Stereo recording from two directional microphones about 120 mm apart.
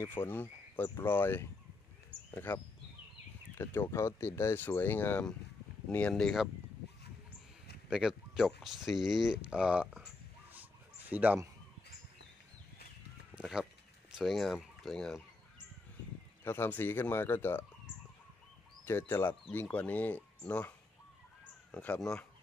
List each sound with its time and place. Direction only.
0.0 s speech: 15° left (ahead or behind)
7.9 s speech: 5° right (ahead or behind)
11.1 s speech: 15° right (ahead or behind)
13.3 s speech: 5° right (ahead or behind)
16.4 s speech: 15° left (ahead or behind)
18.9 s speech: 20° left (ahead or behind)
21.7 s speech: 10° left (ahead or behind)